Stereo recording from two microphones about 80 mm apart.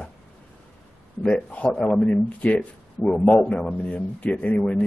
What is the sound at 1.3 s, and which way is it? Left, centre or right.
Speech, centre.